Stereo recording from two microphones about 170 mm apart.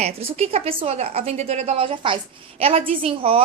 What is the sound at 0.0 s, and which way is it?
A child's voice, 35° right (ahead or behind).